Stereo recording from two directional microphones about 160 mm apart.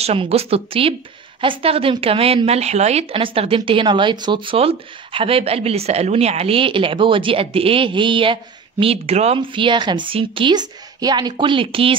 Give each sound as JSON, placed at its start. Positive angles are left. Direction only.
{"t": 0.0, "sound": "a woman's voice", "side_deg": -40}